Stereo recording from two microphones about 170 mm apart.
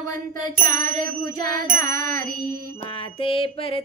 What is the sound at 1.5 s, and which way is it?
Music, 55° right (ahead or behind).